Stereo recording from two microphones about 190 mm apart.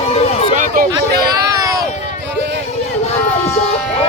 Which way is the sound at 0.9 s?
20° right (ahead or behind).